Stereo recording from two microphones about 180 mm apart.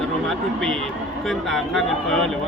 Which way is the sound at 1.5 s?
Centre (ahead or behind).